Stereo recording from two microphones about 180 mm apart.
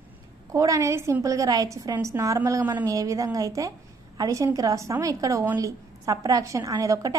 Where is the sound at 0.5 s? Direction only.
15° right (ahead or behind).